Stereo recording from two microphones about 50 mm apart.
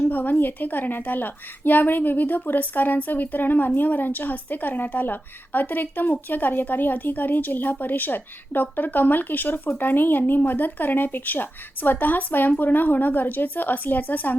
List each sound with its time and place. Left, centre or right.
0.0 s a woman's voice: left